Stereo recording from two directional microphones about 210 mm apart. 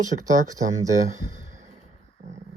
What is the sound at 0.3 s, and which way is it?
Speech, 15° right (ahead or behind).